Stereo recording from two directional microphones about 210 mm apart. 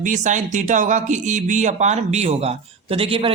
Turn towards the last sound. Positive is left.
turn(degrees=-25)  # may be behind; listen again after turning